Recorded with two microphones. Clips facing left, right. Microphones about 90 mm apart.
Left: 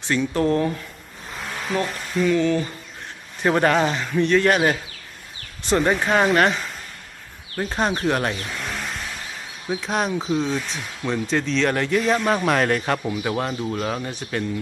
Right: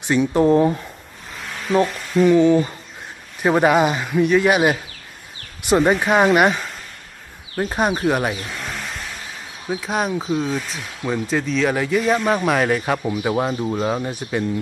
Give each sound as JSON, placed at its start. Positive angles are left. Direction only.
{"t": 0.0, "sound": "speech", "side_deg": -15}
{"t": 1.9, "sound": "speech", "side_deg": 0}
{"t": 2.2, "sound": "speech", "side_deg": -20}